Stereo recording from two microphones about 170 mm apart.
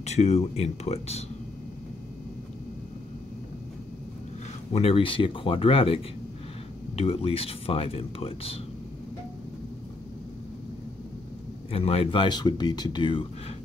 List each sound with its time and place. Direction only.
0.0 s speech: 40° left (ahead or behind)
4.7 s speech: 35° left (ahead or behind)
7.0 s speech: 35° left (ahead or behind)
11.7 s speech: 35° left (ahead or behind)